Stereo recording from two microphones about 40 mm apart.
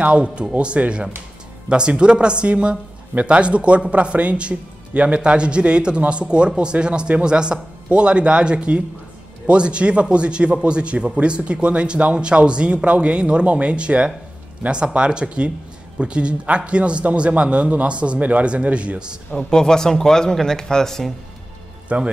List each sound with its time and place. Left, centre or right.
0.0 s a man's voice: right
19.3 s speech: centre
21.8 s speech: right